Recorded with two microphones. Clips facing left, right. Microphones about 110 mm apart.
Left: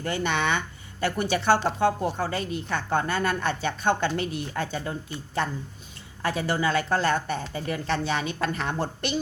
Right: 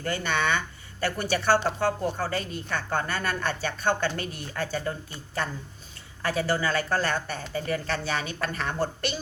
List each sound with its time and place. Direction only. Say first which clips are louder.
0.0 s a woman's voice: left 1 dB; 20° left (ahead or behind)